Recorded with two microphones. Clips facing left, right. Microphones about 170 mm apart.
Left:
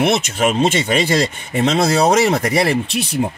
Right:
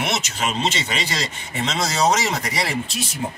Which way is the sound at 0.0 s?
55° left (ahead or behind).